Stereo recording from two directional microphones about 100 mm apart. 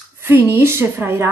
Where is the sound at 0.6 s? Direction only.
25° right (ahead or behind).